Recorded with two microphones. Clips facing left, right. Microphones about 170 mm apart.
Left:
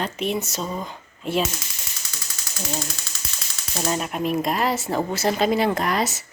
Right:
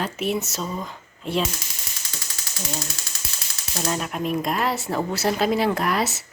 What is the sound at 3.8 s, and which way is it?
Speech, 20° left (ahead or behind).